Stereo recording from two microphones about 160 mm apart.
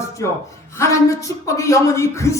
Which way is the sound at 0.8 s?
20° left (ahead or behind).